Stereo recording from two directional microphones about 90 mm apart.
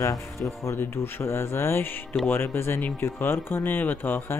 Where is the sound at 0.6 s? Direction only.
30° left (ahead or behind).